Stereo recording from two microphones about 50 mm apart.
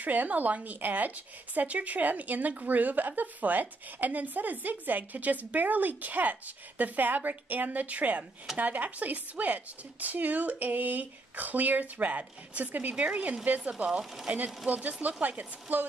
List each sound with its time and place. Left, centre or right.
0.0 s speech: right
14.7 s speech: right